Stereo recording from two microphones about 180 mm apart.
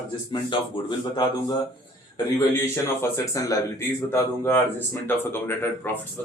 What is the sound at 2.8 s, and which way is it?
Speech, 15° left (ahead or behind).